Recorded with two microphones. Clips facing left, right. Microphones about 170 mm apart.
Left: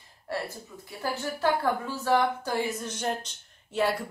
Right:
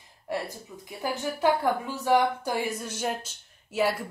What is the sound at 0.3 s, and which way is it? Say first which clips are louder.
A woman's voice: right 1 dB; 15° right (ahead or behind).